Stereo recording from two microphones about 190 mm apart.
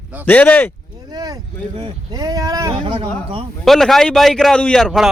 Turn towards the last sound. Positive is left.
turn(degrees=0)  # may be behind; listen again after turning